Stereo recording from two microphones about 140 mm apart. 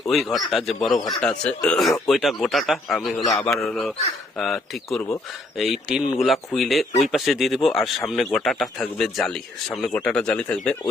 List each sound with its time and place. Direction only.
0.1 s speech: centre (ahead or behind)
3.2 s a man's voice: 25° left (ahead or behind)
3.4 s speech: 5° left (ahead or behind)